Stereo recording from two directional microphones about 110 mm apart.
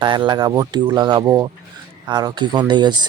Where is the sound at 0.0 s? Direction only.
45° right (ahead or behind).